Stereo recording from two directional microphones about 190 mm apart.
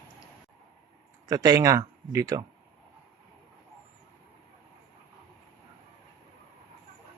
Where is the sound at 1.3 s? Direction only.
20° right (ahead or behind).